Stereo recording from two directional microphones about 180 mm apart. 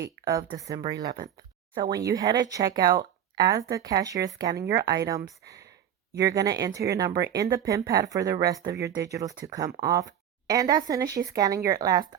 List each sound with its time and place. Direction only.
0.3 s speech: 20° right (ahead or behind)